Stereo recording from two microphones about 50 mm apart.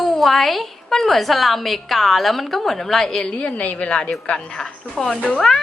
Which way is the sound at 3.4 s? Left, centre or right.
Left.